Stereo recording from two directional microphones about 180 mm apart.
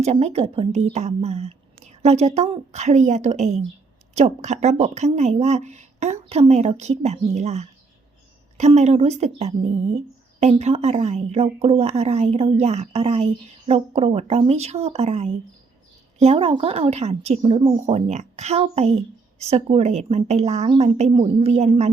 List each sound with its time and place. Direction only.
0.0 s speech: 35° right (ahead or behind)